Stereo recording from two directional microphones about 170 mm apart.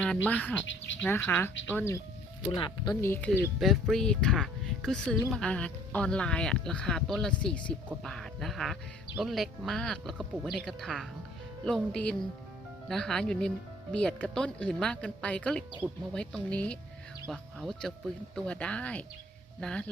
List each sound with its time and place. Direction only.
0.3 s speech: 10° left (ahead or behind)
0.6 s speech: 90° left
1.0 s speech: 10° left (ahead or behind)
2.6 s speech: 30° left (ahead or behind)
3.0 s speech: 10° left (ahead or behind)
3.6 s speech: centre (ahead or behind)